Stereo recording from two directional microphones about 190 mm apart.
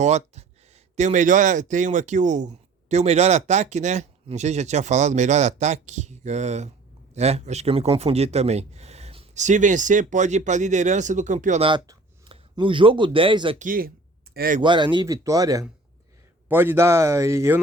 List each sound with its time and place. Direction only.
0.0 s speech: 35° right (ahead or behind)
11.6 s speech: 25° right (ahead or behind)
13.6 s speech: 50° right (ahead or behind)
14.6 s a man's voice: 25° right (ahead or behind)